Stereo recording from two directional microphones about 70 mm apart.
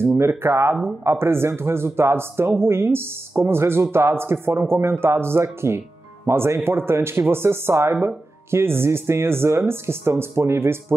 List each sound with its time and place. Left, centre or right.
0.2 s a man's voice: right